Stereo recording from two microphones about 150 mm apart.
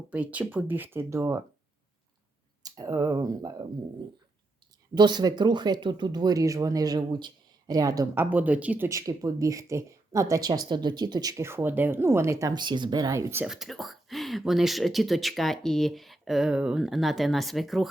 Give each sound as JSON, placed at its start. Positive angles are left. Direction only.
{"t": 0.1, "sound": "speech", "side_deg": -10}
{"t": 2.6, "sound": "speech", "side_deg": -25}
{"t": 4.9, "sound": "speech", "side_deg": -30}
{"t": 8.9, "sound": "speech", "side_deg": -20}
{"t": 13.4, "sound": "speech", "side_deg": -5}